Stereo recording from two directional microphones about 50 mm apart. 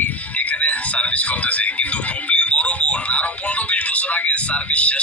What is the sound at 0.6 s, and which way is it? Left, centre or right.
Speech, left.